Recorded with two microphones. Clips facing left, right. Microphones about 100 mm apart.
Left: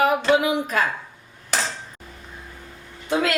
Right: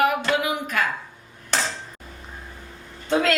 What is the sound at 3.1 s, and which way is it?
Speech, 5° left (ahead or behind).